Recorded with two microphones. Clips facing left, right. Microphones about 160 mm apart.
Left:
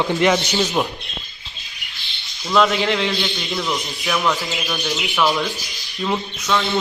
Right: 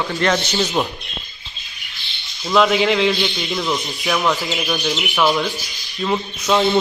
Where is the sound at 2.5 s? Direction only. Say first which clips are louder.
Right 2 dB; 5° right (ahead or behind).